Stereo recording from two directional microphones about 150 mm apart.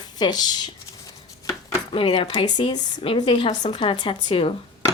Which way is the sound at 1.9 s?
35° left (ahead or behind).